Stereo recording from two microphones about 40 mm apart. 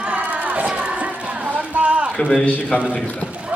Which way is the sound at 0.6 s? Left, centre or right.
Right.